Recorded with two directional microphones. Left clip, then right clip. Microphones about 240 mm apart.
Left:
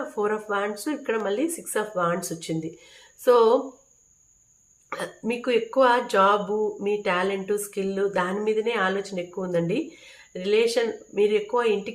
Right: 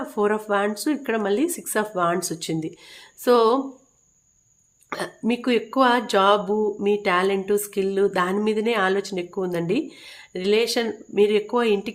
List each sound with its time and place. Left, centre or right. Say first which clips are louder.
0.2 s speech: right 4 dB; right
4.9 s speech: right 3 dB; right